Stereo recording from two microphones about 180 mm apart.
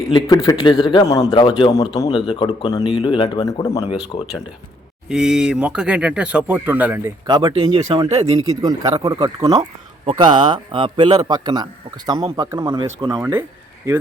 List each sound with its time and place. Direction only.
0.4 s a man's voice: 25° left (ahead or behind)
4.1 s speech: 35° left (ahead or behind)
5.0 s speech: centre (ahead or behind)
7.3 s a man's voice: 25° right (ahead or behind)
8.6 s a man's voice: 20° right (ahead or behind)